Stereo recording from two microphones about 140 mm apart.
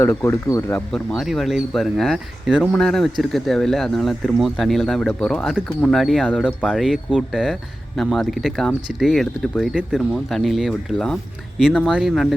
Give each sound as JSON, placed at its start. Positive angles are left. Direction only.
{"t": 0.0, "sound": "speech", "side_deg": 15}
{"t": 0.9, "sound": "speech", "side_deg": 0}